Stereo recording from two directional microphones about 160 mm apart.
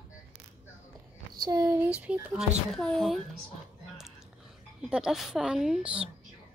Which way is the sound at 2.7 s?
5° left (ahead or behind).